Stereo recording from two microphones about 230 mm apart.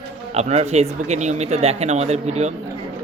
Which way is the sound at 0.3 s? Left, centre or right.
Right.